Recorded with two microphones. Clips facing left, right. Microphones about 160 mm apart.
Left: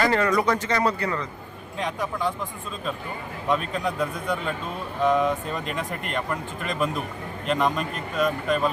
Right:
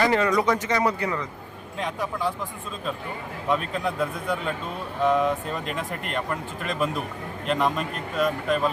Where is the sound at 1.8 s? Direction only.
Centre (ahead or behind).